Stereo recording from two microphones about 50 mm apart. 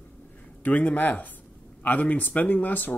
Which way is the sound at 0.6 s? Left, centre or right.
Left.